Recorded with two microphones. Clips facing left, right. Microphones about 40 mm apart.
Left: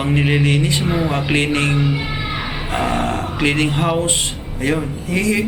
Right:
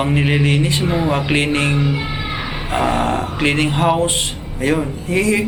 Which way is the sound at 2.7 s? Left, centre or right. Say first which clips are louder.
Right 3 dB; centre.